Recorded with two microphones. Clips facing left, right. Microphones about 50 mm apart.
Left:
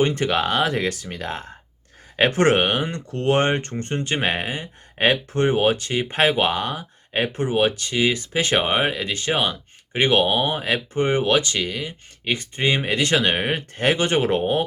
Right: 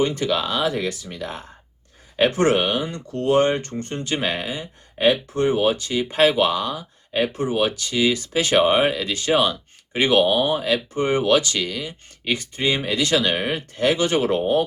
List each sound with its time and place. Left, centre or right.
0.0 s speech: left
12.6 s speech: left